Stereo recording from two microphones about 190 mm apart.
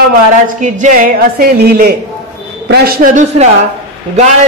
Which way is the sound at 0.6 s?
40° right (ahead or behind).